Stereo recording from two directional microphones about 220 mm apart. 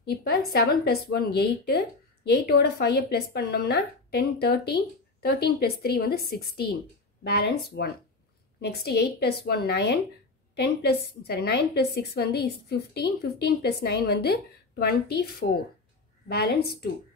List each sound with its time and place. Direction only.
0.0 s a woman's voice: 45° left (ahead or behind)